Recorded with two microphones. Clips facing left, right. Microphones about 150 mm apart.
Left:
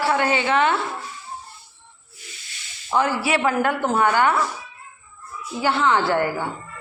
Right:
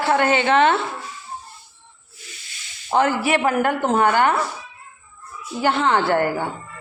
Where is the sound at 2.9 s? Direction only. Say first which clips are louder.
Right 2 dB; 50° right (ahead or behind).